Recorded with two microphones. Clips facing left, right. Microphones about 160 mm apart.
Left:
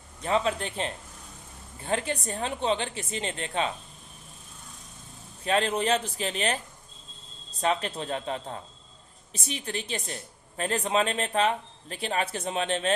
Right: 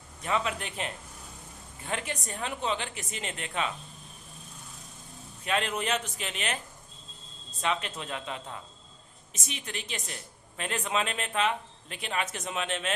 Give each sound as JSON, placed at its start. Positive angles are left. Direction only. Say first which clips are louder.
{"t": 0.2, "sound": "a man's voice", "louder": "left 4 dB", "side_deg": 30}
{"t": 5.5, "sound": "a man's voice", "louder": "left 5 dB", "side_deg": 35}
{"t": 7.6, "sound": "a man's voice", "louder": "left 4 dB", "side_deg": 35}